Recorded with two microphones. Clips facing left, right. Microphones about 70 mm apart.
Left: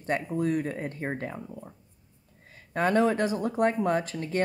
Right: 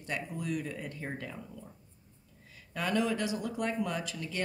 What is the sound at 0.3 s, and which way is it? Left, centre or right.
A woman's voice, left.